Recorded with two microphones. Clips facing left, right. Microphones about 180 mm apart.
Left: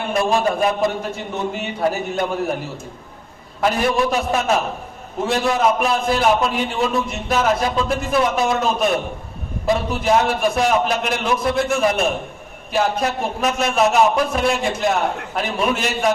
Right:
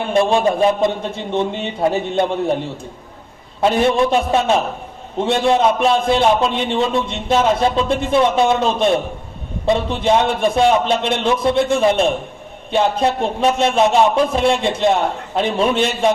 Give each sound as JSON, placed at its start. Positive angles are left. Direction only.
{"t": 0.1, "sound": "a man's voice", "side_deg": -25}